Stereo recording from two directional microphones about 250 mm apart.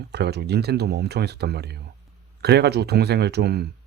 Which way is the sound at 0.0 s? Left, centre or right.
Right.